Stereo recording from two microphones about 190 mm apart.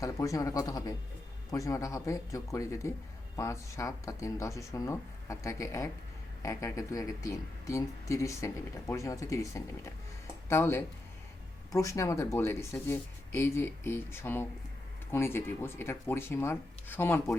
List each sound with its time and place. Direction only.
0.0 s speech: 15° left (ahead or behind)